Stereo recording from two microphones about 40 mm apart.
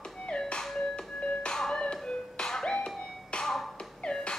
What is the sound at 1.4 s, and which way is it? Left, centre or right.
Music, centre.